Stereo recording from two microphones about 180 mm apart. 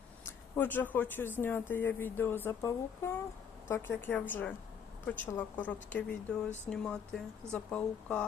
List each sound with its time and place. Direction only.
0.5 s speech: 10° left (ahead or behind)